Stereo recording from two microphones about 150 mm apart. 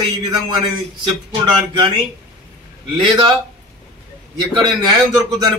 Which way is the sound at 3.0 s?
30° right (ahead or behind).